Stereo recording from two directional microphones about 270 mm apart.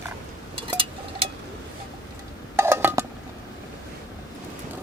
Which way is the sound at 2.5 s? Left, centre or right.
Centre.